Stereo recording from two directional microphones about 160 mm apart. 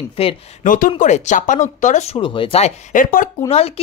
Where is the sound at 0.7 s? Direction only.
55° left (ahead or behind).